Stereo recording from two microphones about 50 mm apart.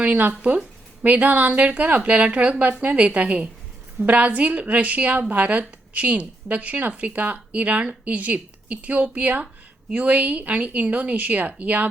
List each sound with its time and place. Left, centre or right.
0.0 s a woman's voice: right